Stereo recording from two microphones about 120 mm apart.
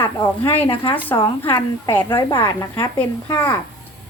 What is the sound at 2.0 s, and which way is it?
Speech, 45° left (ahead or behind).